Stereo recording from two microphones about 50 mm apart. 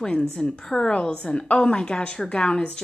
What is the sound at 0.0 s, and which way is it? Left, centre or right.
A woman's voice, centre.